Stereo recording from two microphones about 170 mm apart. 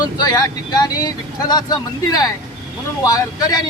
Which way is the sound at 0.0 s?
20° left (ahead or behind).